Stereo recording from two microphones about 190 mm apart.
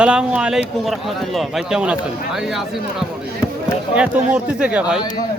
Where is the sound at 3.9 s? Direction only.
5° right (ahead or behind).